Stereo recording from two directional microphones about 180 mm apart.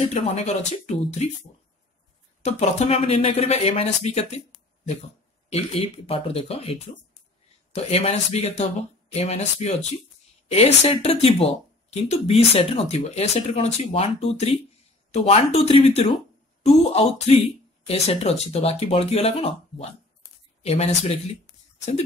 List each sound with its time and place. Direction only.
0.0 s speech: 35° left (ahead or behind)
2.4 s speech: 35° left (ahead or behind)
5.5 s speech: 30° left (ahead or behind)